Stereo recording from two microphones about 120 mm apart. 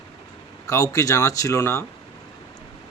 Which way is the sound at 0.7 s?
25° left (ahead or behind).